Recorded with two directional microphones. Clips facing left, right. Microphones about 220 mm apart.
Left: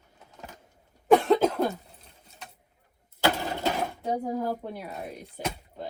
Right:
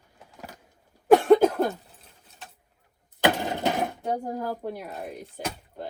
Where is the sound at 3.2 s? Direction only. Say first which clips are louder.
Right 2 dB; 20° right (ahead or behind).